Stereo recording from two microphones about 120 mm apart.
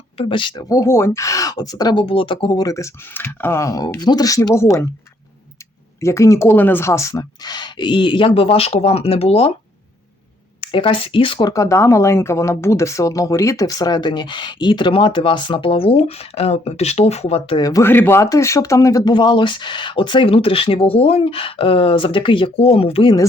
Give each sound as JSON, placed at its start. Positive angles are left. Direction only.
{"t": 0.2, "sound": "speech", "side_deg": 45}
{"t": 6.0, "sound": "speech", "side_deg": 25}
{"t": 10.6, "sound": "speech", "side_deg": 45}
{"t": 17.6, "sound": "speech", "side_deg": 30}
{"t": 17.8, "sound": "speech", "side_deg": 15}
{"t": 19.1, "sound": "speech", "side_deg": 40}